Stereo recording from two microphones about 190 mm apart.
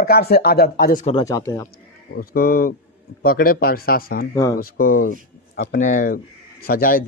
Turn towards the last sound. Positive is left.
turn(degrees=50)  # may be behind; listen again after turning